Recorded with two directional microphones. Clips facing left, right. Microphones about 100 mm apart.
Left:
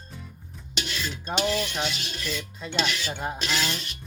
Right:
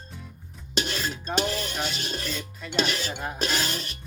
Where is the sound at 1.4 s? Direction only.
40° right (ahead or behind).